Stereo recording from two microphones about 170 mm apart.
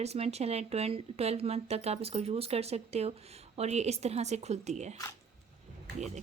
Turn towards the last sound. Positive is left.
turn(degrees=-40)  # may be behind; listen again after turning